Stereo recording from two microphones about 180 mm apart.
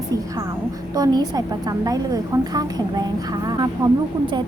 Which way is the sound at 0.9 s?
20° right (ahead or behind).